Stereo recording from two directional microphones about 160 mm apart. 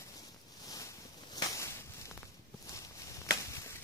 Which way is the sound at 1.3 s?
20° left (ahead or behind).